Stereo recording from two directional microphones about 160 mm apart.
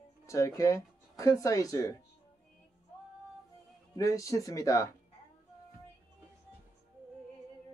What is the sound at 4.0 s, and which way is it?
Speech, 20° left (ahead or behind).